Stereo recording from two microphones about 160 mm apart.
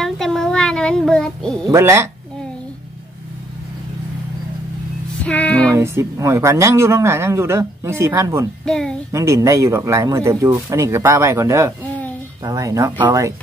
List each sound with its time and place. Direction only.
0.0 s child singing: centre (ahead or behind)
1.6 s speech: 20° right (ahead or behind)
5.2 s music: 10° left (ahead or behind)
5.7 s speech: 15° right (ahead or behind)
8.6 s speech: 5° left (ahead or behind)
9.1 s speech: 20° right (ahead or behind)
11.8 s a sound: 10° left (ahead or behind)
12.4 s speech: 20° right (ahead or behind)